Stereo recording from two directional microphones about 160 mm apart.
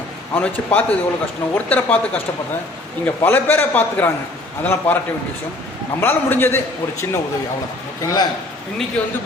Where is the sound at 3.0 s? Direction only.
10° left (ahead or behind).